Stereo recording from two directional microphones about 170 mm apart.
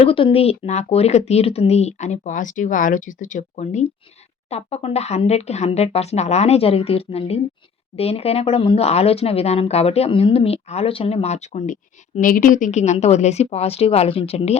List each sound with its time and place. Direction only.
0.0 s speech: 30° left (ahead or behind)